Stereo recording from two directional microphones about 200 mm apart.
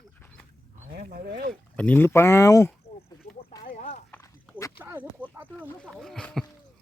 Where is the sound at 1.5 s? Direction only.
5° left (ahead or behind).